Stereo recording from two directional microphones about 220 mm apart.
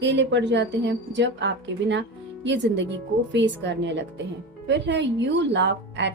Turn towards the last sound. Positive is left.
turn(degrees=-55)  # may be behind; listen again after turning